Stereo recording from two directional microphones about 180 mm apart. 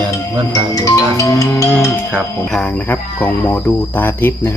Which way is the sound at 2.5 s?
5° left (ahead or behind).